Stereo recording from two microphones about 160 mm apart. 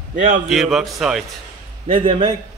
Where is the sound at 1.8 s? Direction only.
35° right (ahead or behind).